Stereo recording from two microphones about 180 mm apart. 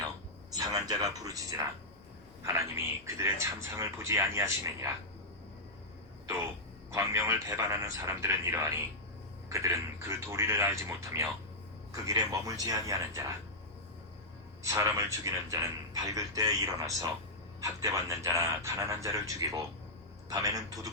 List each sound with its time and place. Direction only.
0.5 s a man's voice: 20° right (ahead or behind)
6.9 s a man's voice: 15° right (ahead or behind)
14.6 s a man's voice: 15° right (ahead or behind)